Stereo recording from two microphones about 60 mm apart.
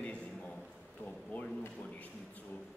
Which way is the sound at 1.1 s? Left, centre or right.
Centre.